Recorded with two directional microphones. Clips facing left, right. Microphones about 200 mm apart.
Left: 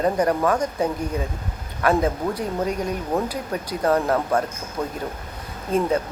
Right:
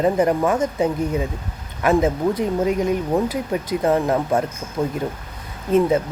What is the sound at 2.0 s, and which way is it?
Speech, 20° right (ahead or behind).